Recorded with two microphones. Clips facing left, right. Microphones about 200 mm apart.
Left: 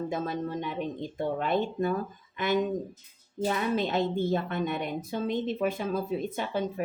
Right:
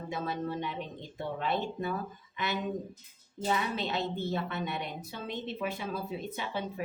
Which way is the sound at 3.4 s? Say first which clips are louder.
Left 4 dB; 50° left (ahead or behind).